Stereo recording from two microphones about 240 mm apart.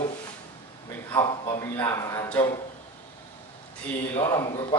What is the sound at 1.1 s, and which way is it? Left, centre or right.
A man's voice, centre.